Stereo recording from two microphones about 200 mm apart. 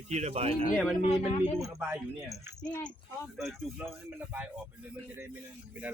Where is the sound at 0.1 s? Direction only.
30° right (ahead or behind).